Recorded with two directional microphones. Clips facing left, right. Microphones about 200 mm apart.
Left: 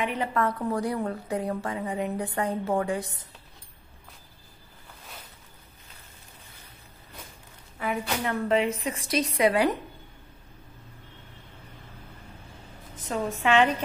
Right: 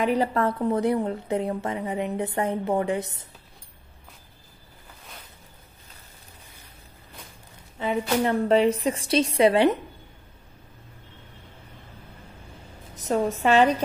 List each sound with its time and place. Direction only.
0.0 s a woman's voice: 35° right (ahead or behind)
7.8 s a woman's voice: 30° right (ahead or behind)
12.9 s a woman's voice: 45° right (ahead or behind)